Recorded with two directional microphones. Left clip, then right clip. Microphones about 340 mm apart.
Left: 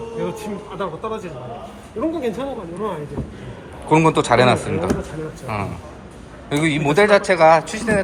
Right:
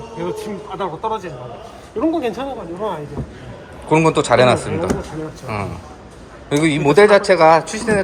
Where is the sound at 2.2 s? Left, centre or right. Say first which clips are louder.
Right 2 dB; centre.